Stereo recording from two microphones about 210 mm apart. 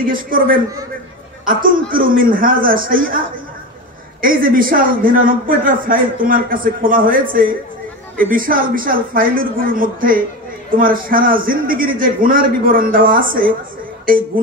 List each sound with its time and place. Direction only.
0.0 s a man's voice: 40° right (ahead or behind)
4.2 s a man's voice: 40° right (ahead or behind)